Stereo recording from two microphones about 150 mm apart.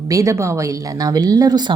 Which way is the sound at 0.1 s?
20° right (ahead or behind).